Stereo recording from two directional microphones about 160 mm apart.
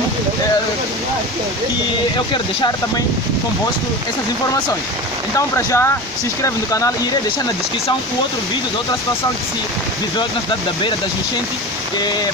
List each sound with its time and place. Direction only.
2.1 s speech: 30° left (ahead or behind)
5.6 s speech: 15° left (ahead or behind)